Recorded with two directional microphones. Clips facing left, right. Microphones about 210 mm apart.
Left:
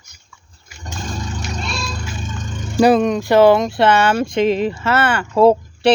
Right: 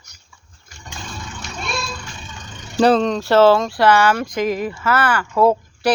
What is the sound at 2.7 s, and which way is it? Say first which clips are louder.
Speech: left 2 dB; 10° left (ahead or behind).